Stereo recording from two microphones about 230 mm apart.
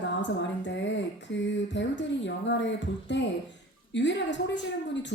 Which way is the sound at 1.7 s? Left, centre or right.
Left.